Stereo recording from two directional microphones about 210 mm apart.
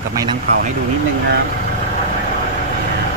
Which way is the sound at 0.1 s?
15° right (ahead or behind).